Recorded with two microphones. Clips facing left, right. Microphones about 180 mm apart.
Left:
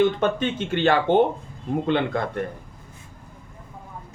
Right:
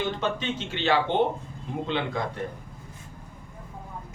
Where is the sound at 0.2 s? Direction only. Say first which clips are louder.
Left 6 dB; 55° left (ahead or behind).